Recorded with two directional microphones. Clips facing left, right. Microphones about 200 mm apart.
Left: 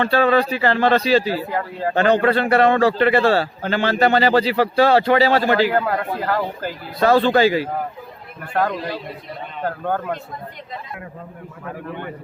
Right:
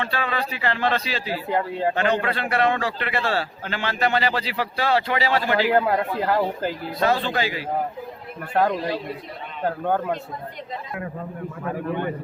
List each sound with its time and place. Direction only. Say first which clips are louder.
0.0 s a man's voice: left 10 dB; 35° left (ahead or behind)
1.5 s speech: right 1 dB; 20° right (ahead or behind)
2.0 s a man's voice: left 12 dB; 35° left (ahead or behind)
5.7 s speech: even; 20° right (ahead or behind)
7.0 s a man's voice: left 8 dB; 35° left (ahead or behind)
9.6 s a man's voice: right 1 dB; 15° right (ahead or behind)